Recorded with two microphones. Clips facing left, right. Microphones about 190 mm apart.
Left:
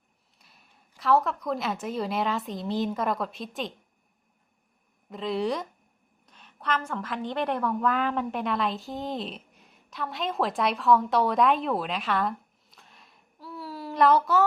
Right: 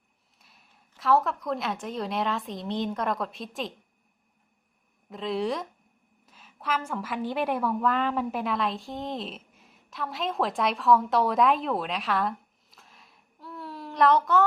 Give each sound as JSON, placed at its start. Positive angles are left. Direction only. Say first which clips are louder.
{"t": 0.3, "sound": "a woman's voice", "louder": "even", "side_deg": 0}
{"t": 5.0, "sound": "a woman's voice", "louder": "left 1 dB", "side_deg": 0}
{"t": 12.7, "sound": "a sound", "louder": "even", "side_deg": 0}